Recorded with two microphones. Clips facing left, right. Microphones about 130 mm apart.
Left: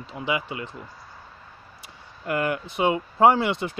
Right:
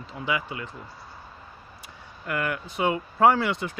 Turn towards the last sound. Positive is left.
turn(degrees=25)  # may be behind; listen again after turning